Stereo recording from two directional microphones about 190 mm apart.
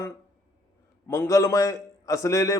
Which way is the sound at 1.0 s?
15° left (ahead or behind).